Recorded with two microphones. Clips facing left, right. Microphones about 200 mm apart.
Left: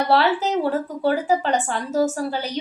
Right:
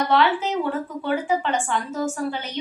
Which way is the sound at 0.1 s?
40° left (ahead or behind).